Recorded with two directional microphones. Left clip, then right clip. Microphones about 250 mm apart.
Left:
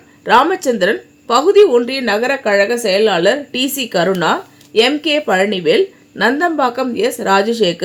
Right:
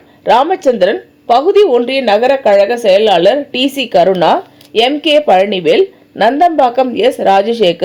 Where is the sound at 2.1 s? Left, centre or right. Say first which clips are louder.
Right 6 dB; right.